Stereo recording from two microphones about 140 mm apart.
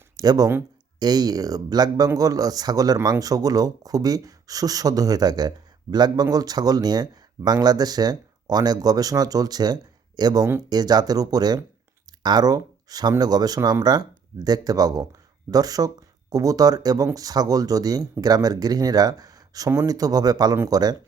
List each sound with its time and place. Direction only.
0.2 s speech: 25° right (ahead or behind)